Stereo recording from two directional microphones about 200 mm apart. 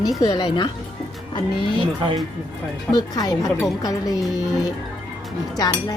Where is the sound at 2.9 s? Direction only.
20° left (ahead or behind).